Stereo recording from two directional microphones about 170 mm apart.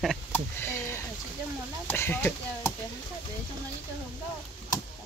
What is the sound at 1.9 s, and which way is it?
Speech, 15° left (ahead or behind).